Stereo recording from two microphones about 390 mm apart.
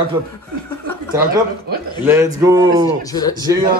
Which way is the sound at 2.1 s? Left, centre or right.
Centre.